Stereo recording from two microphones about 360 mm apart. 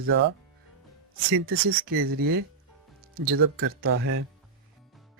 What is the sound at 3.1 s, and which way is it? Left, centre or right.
Speech, right.